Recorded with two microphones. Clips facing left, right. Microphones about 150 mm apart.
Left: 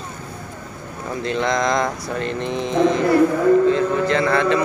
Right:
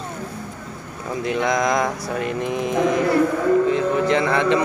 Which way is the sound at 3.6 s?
15° right (ahead or behind).